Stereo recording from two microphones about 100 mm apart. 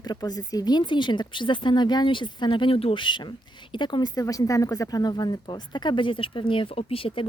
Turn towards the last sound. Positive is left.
turn(degrees=65)  # may be behind; listen again after turning